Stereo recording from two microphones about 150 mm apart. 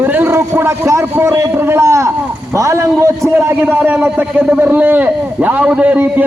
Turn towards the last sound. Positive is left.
turn(degrees=-10)  # may be behind; listen again after turning